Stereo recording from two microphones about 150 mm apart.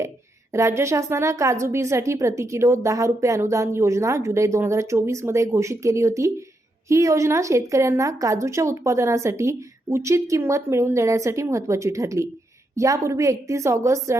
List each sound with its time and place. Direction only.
0.5 s a woman's voice: 20° right (ahead or behind)